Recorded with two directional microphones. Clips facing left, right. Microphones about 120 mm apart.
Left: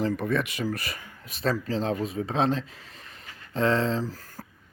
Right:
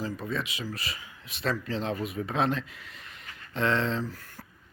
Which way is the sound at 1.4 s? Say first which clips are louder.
Left 4 dB; 35° left (ahead or behind).